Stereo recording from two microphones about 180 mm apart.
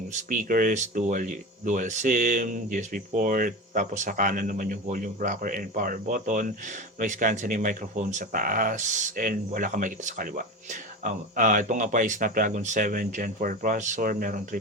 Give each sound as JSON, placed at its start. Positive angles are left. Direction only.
{"t": 0.1, "sound": "speech", "side_deg": -50}